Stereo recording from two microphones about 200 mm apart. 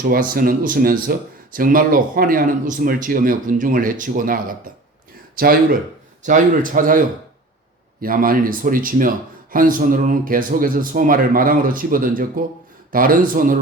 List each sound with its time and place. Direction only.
0.0 s speech: 45° right (ahead or behind)
8.0 s speech: 45° right (ahead or behind)